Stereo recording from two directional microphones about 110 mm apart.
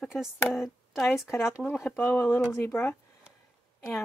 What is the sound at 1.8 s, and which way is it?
Speech, 15° left (ahead or behind).